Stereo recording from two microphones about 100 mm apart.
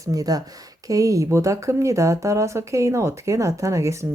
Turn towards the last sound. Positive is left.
turn(degrees=-30)  # may be behind; listen again after turning